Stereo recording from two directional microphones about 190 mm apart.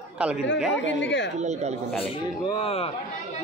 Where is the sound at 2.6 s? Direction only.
30° left (ahead or behind).